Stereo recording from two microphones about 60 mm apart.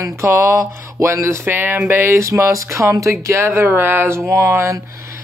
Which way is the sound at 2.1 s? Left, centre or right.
Right.